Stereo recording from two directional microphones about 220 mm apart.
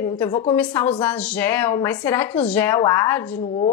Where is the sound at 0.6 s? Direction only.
5° left (ahead or behind).